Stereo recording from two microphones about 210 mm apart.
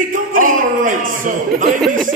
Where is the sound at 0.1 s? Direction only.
40° right (ahead or behind).